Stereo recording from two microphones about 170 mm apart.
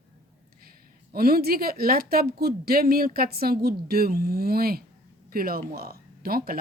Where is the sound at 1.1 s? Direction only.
65° right (ahead or behind).